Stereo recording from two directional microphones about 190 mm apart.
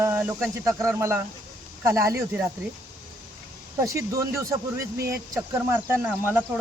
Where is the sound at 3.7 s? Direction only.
15° right (ahead or behind).